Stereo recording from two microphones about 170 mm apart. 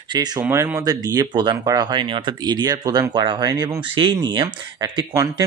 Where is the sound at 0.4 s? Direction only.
15° right (ahead or behind).